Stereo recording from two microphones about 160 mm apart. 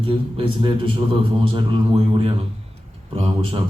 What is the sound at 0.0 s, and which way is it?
A man's voice, 35° right (ahead or behind).